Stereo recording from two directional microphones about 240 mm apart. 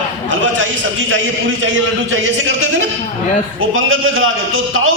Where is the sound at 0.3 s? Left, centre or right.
Right.